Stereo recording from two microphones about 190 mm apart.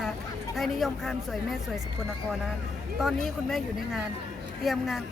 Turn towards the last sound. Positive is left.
turn(degrees=0)  # may be behind; listen again after turning